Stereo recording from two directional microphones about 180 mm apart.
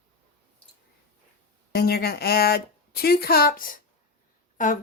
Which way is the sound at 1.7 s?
60° left (ahead or behind).